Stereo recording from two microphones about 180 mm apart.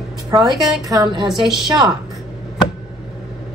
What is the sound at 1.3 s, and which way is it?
Speech, centre (ahead or behind).